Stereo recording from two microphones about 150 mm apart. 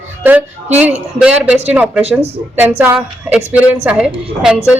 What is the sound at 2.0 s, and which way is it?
Speech, 45° right (ahead or behind).